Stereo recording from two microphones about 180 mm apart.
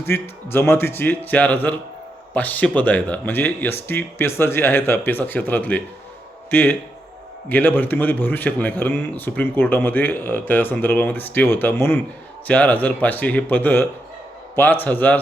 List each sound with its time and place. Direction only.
0.0 s a man's voice: 15° left (ahead or behind)